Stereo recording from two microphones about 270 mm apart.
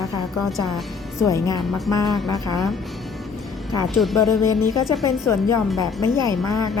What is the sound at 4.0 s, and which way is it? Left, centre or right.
Speech, centre.